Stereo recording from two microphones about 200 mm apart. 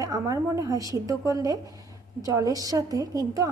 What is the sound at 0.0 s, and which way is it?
A woman's voice, 15° right (ahead or behind).